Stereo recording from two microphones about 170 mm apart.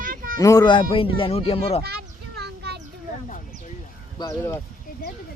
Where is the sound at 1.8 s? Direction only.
70° right (ahead or behind).